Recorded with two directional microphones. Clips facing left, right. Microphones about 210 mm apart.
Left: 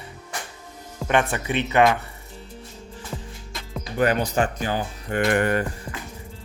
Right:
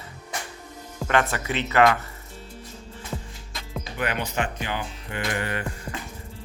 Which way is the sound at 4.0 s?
40° left (ahead or behind).